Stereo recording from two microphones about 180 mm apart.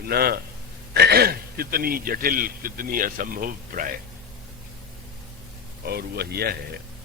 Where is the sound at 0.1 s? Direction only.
60° right (ahead or behind).